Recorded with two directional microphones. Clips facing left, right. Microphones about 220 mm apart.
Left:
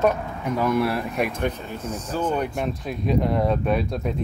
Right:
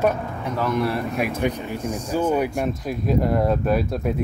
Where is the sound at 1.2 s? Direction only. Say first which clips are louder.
Right 2 dB; 5° right (ahead or behind).